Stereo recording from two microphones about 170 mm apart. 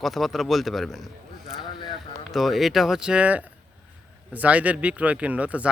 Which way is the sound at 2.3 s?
Centre (ahead or behind).